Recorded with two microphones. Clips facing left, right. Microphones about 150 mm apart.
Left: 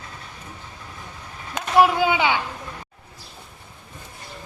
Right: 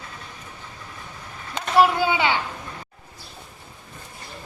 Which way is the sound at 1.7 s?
15° left (ahead or behind).